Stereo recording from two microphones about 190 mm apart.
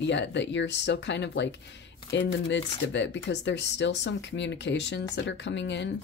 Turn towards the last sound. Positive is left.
turn(degrees=70)  # may be behind; listen again after turning